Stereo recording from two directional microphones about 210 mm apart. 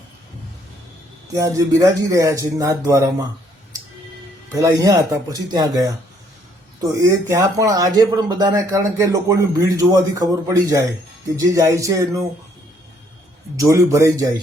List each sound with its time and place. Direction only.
1.3 s speech: 15° right (ahead or behind)
4.5 s speech: 15° right (ahead or behind)
7.0 s speech: 15° right (ahead or behind)
13.6 s speech: 15° right (ahead or behind)